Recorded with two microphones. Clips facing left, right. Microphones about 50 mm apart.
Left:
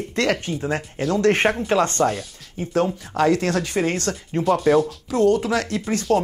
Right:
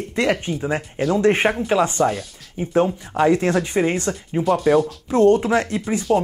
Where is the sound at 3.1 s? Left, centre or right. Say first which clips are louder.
Right 2 dB; right.